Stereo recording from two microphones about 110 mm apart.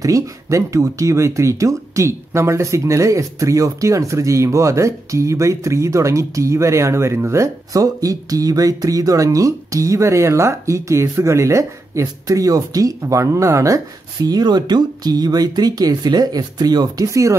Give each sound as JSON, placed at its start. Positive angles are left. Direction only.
{"t": 0.0, "sound": "speech", "side_deg": -30}
{"t": 14.2, "sound": "speech", "side_deg": -40}